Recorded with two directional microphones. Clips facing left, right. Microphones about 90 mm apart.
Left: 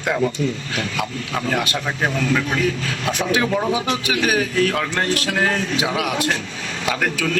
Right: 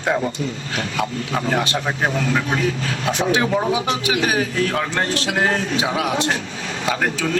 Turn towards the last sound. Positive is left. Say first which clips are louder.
# right 1 dB
turn(degrees=-25)  # may be behind; listen again after turning